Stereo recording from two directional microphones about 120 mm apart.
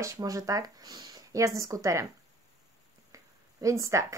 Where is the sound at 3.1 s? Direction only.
25° right (ahead or behind).